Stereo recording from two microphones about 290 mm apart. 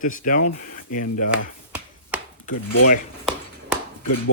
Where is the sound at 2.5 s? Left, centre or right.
Left.